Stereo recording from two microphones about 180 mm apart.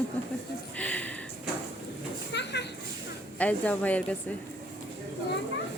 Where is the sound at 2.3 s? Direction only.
70° left (ahead or behind).